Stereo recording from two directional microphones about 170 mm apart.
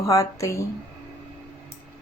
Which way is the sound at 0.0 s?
15° left (ahead or behind).